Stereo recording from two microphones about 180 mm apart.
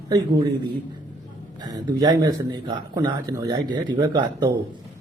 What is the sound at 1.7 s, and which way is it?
Speech, 20° right (ahead or behind).